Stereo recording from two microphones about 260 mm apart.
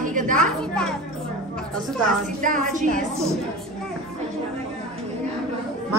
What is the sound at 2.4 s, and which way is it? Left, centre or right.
Speech, right.